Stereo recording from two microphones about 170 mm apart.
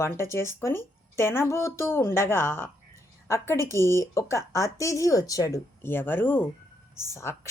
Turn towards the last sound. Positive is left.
turn(degrees=15)  # may be behind; listen again after turning